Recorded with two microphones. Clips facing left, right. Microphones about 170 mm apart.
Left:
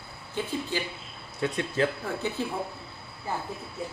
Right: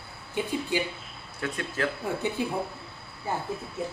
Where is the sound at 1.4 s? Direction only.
20° left (ahead or behind).